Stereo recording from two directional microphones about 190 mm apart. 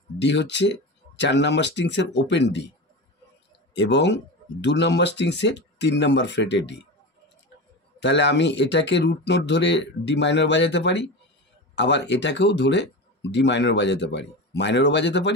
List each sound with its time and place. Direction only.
0.2 s speech: 65° left (ahead or behind)
3.7 s speech: 65° left (ahead or behind)
8.0 s speech: 70° left (ahead or behind)